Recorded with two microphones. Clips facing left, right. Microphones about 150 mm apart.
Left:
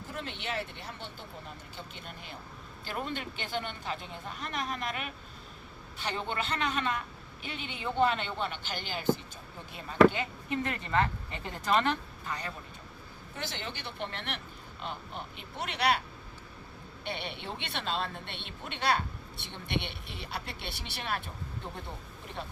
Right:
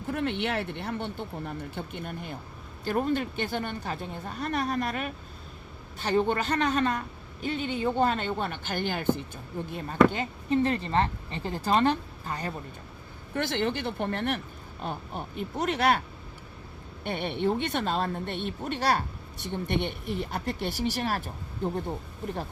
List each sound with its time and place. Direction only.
0.1 s a woman's voice: 60° right (ahead or behind)
10.1 s speech: 35° right (ahead or behind)
13.3 s a woman's voice: 55° right (ahead or behind)
17.0 s a woman's voice: 50° right (ahead or behind)